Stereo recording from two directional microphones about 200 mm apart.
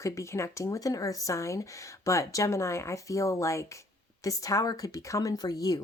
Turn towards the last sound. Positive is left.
turn(degrees=20)  # may be behind; listen again after turning